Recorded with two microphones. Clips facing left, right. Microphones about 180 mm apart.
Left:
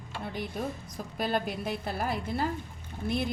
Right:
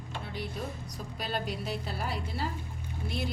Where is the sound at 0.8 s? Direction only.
50° left (ahead or behind).